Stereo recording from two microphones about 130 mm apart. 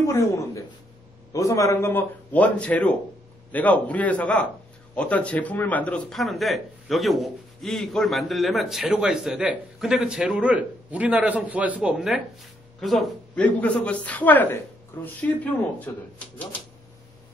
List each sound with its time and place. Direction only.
1.3 s a man's voice: 25° left (ahead or behind); by 13.1 s centre (ahead or behind)
13.3 s a man's voice: 10° left (ahead or behind)